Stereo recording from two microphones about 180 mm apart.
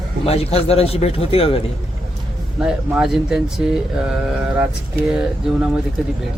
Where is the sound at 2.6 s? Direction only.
5° right (ahead or behind).